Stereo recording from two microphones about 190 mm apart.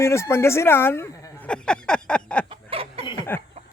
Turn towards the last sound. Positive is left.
turn(degrees=20)  # may be behind; listen again after turning